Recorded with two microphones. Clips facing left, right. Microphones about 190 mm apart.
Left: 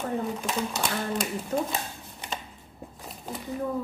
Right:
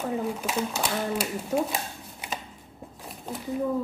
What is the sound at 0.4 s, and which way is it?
Speech, 5° right (ahead or behind).